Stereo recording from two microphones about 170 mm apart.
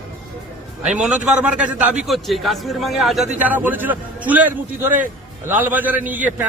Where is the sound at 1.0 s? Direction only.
5° right (ahead or behind).